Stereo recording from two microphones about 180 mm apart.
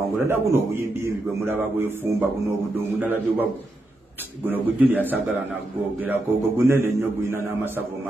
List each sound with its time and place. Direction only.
0.3 s a man's voice: 15° right (ahead or behind)
4.5 s a man's voice: 10° right (ahead or behind)